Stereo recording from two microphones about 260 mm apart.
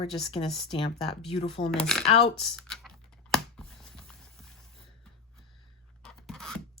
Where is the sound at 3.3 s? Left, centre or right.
Centre.